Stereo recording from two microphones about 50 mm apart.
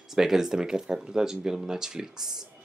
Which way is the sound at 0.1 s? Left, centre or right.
Centre.